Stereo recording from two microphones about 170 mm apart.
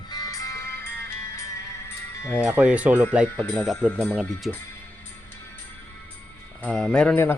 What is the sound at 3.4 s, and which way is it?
A man's voice, 10° left (ahead or behind).